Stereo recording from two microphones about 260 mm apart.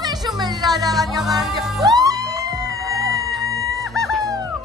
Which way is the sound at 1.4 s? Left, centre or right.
Centre.